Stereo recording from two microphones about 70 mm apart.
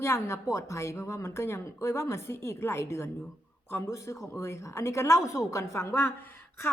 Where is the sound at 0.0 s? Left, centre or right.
Left.